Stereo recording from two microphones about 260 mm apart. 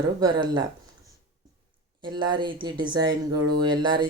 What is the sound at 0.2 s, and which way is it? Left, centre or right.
Speech, centre.